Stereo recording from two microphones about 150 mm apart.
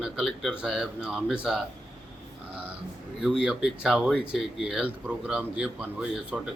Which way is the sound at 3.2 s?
5° right (ahead or behind).